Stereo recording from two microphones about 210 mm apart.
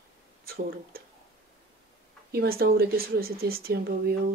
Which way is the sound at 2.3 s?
45° right (ahead or behind).